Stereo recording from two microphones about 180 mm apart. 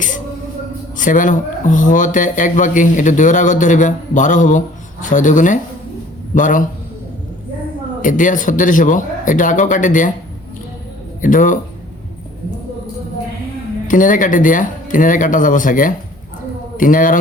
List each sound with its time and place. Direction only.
0.9 s speech: 45° left (ahead or behind)
8.0 s speech: 45° left (ahead or behind)
11.2 s speech: 45° left (ahead or behind)
13.8 s a man's voice: 45° left (ahead or behind)